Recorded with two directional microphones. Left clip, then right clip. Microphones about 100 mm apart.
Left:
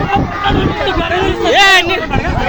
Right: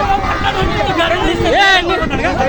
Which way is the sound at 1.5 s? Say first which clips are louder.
Left 3 dB; centre (ahead or behind).